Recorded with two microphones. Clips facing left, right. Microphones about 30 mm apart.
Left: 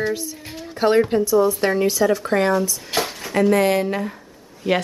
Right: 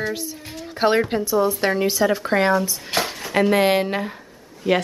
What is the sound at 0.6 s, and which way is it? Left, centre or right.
Music, centre.